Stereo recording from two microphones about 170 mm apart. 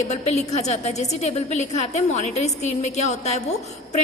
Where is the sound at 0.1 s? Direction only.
40° left (ahead or behind).